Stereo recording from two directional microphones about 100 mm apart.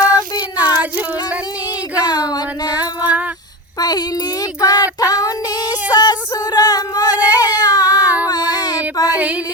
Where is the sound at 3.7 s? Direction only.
40° left (ahead or behind).